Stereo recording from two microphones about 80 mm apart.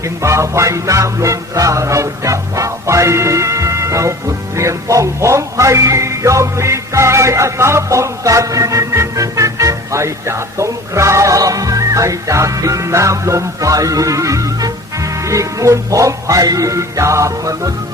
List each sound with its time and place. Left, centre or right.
0.0 s music: right